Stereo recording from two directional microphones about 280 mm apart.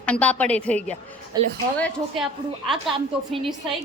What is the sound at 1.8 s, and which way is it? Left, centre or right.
Speech, centre.